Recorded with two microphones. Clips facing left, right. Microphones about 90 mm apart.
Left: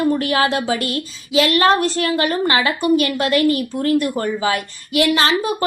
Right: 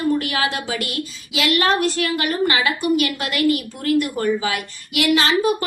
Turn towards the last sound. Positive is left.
turn(degrees=35)  # may be behind; listen again after turning